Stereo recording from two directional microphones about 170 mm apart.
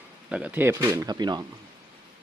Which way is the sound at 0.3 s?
5° right (ahead or behind).